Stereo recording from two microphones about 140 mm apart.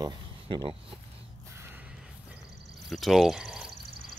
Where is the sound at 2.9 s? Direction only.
Centre (ahead or behind).